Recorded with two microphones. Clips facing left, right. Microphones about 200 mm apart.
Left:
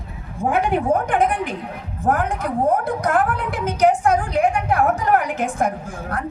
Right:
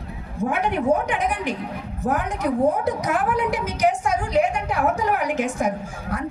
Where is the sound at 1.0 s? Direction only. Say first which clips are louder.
Left 4 dB; 55° left (ahead or behind).